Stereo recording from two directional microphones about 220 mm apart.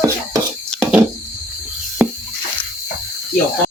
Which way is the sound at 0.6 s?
5° left (ahead or behind).